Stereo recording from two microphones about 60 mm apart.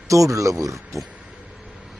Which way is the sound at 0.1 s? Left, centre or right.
Right.